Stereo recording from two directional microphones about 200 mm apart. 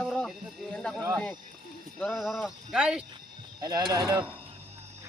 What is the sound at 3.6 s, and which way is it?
Speech, 20° right (ahead or behind).